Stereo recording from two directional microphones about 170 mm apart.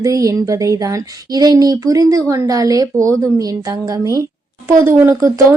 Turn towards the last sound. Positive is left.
turn(degrees=-20)  # may be behind; listen again after turning